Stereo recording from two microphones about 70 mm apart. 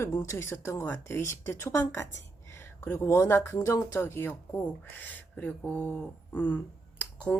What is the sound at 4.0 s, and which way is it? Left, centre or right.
Speech, left.